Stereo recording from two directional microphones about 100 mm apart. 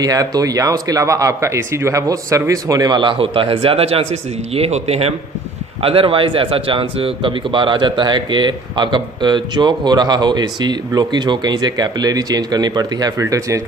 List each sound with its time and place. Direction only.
0.0 s speech: 40° right (ahead or behind); by 5.1 s 90° right
5.8 s speech: 65° right (ahead or behind); by 13.6 s 35° right (ahead or behind)